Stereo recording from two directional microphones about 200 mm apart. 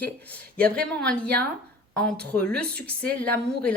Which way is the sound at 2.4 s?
5° left (ahead or behind).